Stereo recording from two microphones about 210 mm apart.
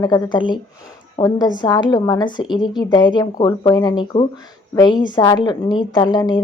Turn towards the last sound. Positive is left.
turn(degrees=20)  # may be behind; listen again after turning